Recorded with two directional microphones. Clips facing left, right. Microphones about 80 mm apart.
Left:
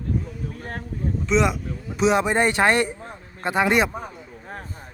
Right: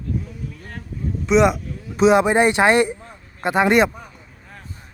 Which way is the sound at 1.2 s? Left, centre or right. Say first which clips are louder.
Right 6 dB; centre.